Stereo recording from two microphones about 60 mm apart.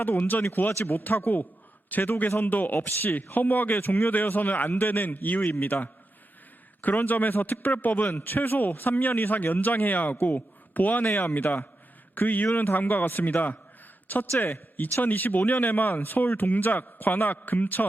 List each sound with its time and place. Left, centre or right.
0.0 s a man's voice: left
6.8 s a man's voice: left